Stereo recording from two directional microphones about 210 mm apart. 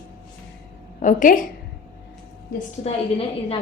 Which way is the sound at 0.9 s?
40° left (ahead or behind).